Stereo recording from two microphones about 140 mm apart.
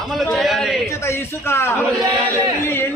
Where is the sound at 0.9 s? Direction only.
20° left (ahead or behind).